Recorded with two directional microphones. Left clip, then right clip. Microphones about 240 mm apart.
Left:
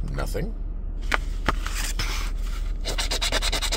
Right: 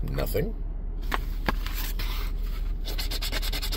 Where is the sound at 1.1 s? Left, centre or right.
Centre.